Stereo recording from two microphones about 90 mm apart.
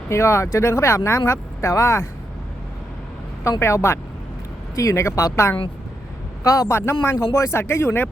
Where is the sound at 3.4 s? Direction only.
35° left (ahead or behind).